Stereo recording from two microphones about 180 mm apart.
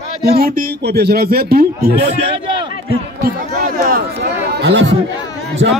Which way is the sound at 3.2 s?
55° right (ahead or behind).